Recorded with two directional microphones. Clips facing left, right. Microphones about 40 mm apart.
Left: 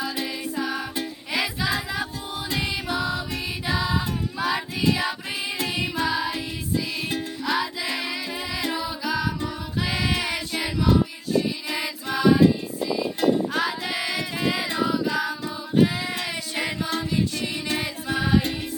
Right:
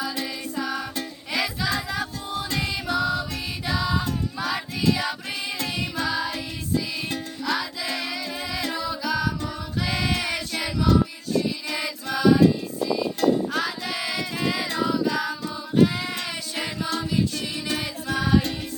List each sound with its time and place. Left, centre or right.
0.0 s music: centre
13.5 s music: centre
16.0 s a sound: centre
17.7 s music: centre